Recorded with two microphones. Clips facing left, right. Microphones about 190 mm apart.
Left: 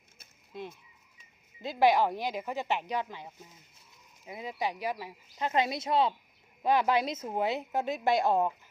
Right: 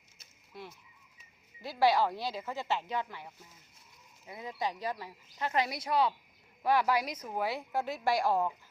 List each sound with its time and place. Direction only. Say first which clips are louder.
0.5 s a woman's voice: left 6 dB; 20° left (ahead or behind)